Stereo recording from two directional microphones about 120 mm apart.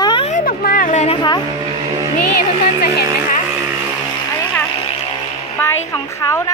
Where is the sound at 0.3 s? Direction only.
90° left.